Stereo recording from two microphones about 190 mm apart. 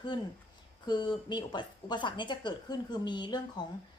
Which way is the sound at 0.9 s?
25° left (ahead or behind).